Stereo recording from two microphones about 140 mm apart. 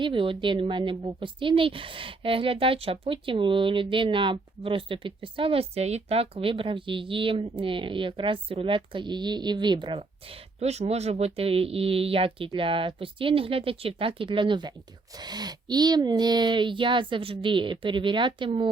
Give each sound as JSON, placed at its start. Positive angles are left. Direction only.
{"t": 0.0, "sound": "a woman's voice", "side_deg": -40}
{"t": 10.0, "sound": "a woman's voice", "side_deg": -50}